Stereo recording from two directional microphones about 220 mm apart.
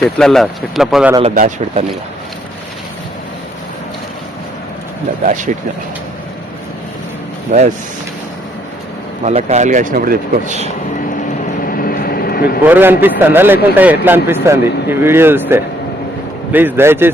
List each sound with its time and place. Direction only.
0.2 s speech: centre (ahead or behind)
1.2 s speech: 30° right (ahead or behind)
5.2 s speech: 35° right (ahead or behind)
7.5 s speech: 35° right (ahead or behind)
9.2 s speech: 30° right (ahead or behind)
11.6 s vehicle: 40° left (ahead or behind)
12.6 s a man's voice: 10° right (ahead or behind)